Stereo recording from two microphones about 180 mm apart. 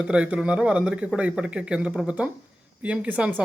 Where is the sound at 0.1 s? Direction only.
5° right (ahead or behind).